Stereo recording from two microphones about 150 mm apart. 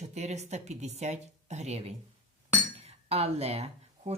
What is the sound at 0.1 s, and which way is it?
Speech, 45° right (ahead or behind).